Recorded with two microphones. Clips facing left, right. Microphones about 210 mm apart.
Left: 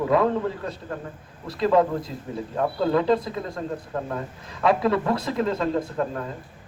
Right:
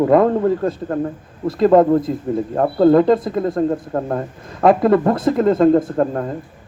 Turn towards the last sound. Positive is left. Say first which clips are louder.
# right 8 dB
turn(degrees=-45)  # may be behind; listen again after turning